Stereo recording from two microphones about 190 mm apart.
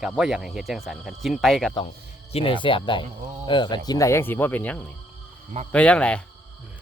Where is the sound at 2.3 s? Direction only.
25° left (ahead or behind).